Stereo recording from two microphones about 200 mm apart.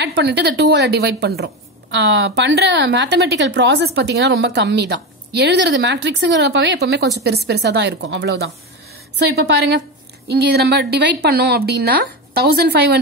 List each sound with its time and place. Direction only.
0.0 s a woman's voice: 55° right (ahead or behind)